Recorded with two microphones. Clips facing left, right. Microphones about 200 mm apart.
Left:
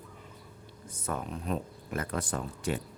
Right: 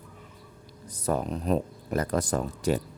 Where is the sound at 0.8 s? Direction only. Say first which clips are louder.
Right 8 dB; 35° right (ahead or behind).